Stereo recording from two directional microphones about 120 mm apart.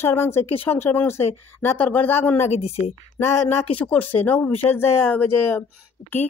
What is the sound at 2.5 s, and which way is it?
Speech, 60° left (ahead or behind).